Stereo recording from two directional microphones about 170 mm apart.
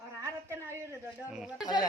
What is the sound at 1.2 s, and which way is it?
Speech, 5° right (ahead or behind).